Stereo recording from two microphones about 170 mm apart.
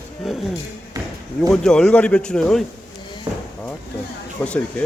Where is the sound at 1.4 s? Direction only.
5° left (ahead or behind).